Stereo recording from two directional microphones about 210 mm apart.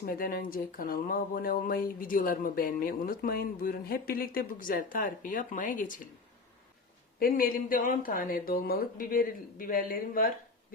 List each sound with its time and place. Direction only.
0.0 s speech: 45° left (ahead or behind)
7.2 s speech: 45° left (ahead or behind)